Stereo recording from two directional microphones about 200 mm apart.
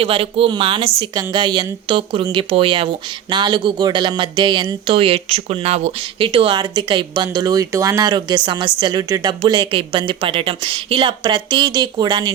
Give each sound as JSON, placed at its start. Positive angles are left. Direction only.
{"t": 0.0, "sound": "a woman's voice", "side_deg": -30}